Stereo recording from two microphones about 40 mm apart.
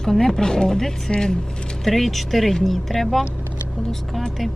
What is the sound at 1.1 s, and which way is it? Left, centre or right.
Speech, centre.